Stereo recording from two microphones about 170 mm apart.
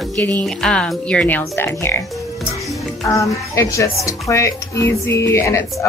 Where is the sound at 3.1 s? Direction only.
20° left (ahead or behind).